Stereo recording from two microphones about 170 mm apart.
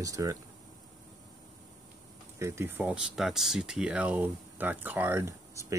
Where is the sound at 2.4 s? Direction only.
15° right (ahead or behind).